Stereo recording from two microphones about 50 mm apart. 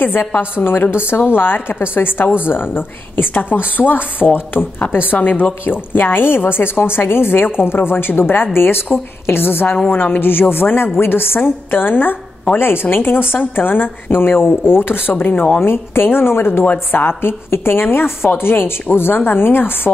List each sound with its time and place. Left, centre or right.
0.0 s a woman's voice: left
15.6 s a woman's voice: left
16.6 s speech: left
17.2 s a woman's voice: left